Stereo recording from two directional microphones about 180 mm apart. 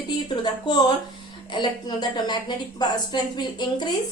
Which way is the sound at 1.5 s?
25° left (ahead or behind).